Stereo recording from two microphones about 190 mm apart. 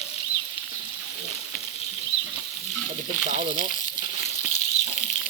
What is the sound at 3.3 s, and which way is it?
Frying, 40° right (ahead or behind).